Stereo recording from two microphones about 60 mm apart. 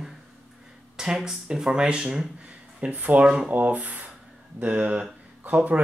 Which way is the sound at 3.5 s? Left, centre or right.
Right.